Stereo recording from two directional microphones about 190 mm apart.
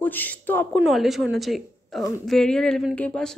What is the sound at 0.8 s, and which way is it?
Speech, centre (ahead or behind).